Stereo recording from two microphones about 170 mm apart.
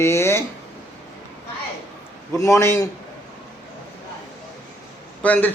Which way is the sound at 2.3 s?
20° left (ahead or behind).